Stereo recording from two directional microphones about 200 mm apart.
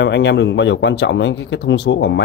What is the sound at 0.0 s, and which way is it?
A man's voice, 60° left (ahead or behind).